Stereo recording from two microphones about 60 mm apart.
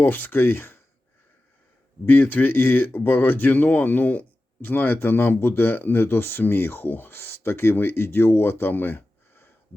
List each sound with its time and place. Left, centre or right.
0.0 s speech: left
2.0 s speech: left